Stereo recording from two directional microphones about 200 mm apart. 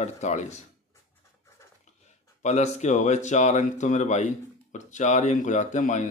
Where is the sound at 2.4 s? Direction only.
35° left (ahead or behind).